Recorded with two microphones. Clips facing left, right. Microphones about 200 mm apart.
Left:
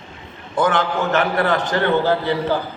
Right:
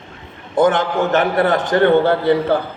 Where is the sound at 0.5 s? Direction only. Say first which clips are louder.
Right 4 dB; 45° right (ahead or behind).